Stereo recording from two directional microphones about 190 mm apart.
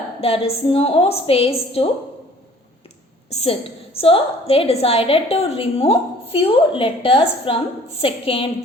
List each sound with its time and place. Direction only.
0.2 s a woman's voice: 30° left (ahead or behind)
3.2 s a woman's voice: 30° left (ahead or behind)